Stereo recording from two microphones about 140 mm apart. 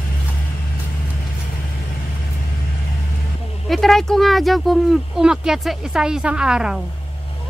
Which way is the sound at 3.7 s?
Centre (ahead or behind).